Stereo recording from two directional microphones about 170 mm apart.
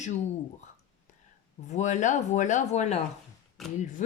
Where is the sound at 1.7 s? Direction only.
45° left (ahead or behind).